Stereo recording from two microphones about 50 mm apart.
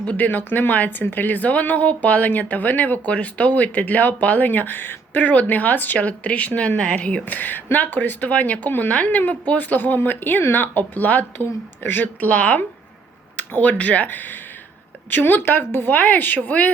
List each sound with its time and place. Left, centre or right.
0.0 s speech: left
7.3 s speech: left
11.3 s speech: left